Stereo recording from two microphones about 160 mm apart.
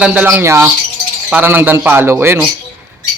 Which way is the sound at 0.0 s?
10° right (ahead or behind).